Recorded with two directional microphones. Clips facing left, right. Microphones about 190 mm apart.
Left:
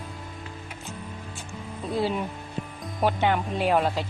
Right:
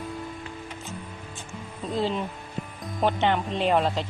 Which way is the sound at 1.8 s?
10° left (ahead or behind).